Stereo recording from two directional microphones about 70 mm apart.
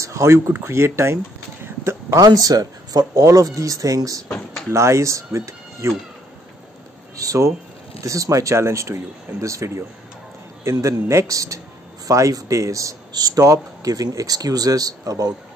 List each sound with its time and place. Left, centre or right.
0.0 s speech: right
2.1 s speech: right
4.6 s speech: right
7.2 s speech: right
13.1 s speech: right
13.4 s speech: right